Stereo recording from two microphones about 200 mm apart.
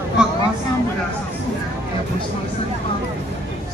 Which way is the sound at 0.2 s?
5° right (ahead or behind).